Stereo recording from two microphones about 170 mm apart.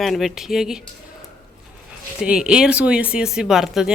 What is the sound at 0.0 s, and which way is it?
Speech, centre (ahead or behind).